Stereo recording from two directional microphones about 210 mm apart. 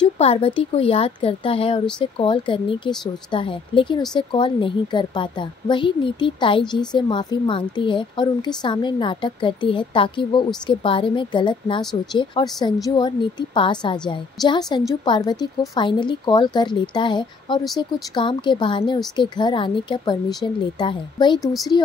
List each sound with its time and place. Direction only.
0.2 s speech: 25° left (ahead or behind)